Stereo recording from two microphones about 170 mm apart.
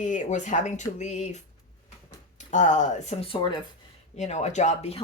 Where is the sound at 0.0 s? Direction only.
45° left (ahead or behind).